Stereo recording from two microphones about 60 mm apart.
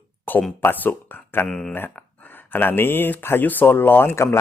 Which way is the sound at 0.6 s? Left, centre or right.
Left.